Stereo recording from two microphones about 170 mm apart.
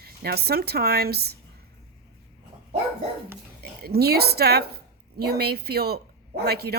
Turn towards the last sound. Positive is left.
turn(degrees=-70)  # may be behind; listen again after turning